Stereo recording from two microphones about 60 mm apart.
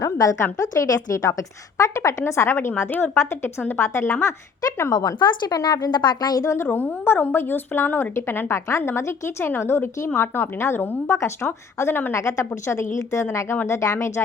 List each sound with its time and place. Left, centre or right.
0.0 s a woman's voice: left
0.5 s a woman's voice: left
2.2 s a woman's voice: left
4.9 s a woman's voice: left
6.3 s a woman's voice: left
6.6 s a woman's voice: left
10.8 s a woman's voice: left
11.3 s a woman's voice: left
12.1 s a woman's voice: left